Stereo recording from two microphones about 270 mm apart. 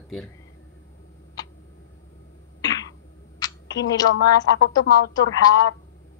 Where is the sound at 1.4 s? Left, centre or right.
Centre.